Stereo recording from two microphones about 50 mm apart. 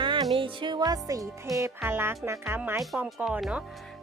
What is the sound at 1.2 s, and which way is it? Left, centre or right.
Speech, right.